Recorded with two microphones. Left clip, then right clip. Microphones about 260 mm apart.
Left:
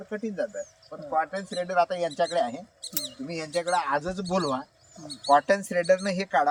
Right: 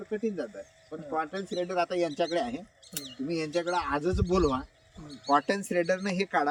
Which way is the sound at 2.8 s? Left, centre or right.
Left.